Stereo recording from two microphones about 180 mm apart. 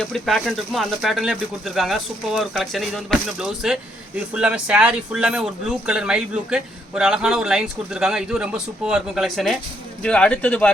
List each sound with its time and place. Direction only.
0.0 s speech: centre (ahead or behind)